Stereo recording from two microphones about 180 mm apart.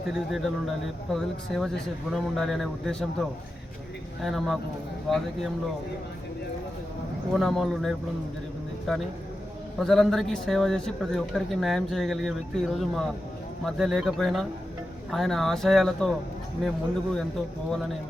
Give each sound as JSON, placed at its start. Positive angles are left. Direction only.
{"t": 0.1, "sound": "a man's voice", "side_deg": 0}
{"t": 7.3, "sound": "a man's voice", "side_deg": 0}